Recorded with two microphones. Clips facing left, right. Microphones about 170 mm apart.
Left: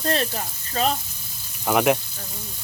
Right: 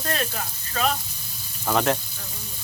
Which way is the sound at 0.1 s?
30° left (ahead or behind).